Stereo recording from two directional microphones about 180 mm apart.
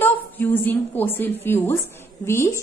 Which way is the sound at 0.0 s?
10° left (ahead or behind).